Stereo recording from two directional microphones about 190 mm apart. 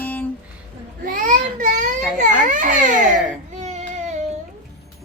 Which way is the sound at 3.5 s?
35° right (ahead or behind).